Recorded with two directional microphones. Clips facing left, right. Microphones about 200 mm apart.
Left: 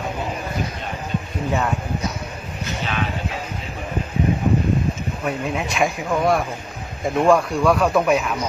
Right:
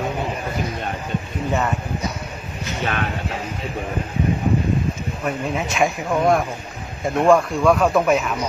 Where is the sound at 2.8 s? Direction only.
55° right (ahead or behind).